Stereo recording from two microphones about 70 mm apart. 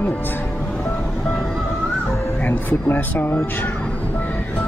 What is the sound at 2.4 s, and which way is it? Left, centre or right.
Music, left.